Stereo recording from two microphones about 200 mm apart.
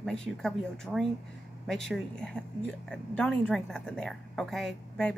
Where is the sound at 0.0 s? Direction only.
Centre (ahead or behind).